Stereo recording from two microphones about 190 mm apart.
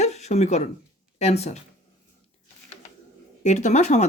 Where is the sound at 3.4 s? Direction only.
40° left (ahead or behind).